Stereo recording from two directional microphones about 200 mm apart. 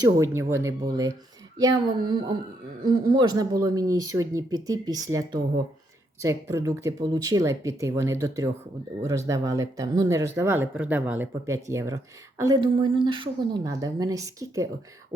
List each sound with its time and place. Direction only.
0.0 s speech: 15° right (ahead or behind)